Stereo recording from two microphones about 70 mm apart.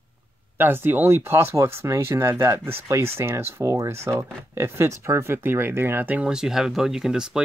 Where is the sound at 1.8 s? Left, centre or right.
Right.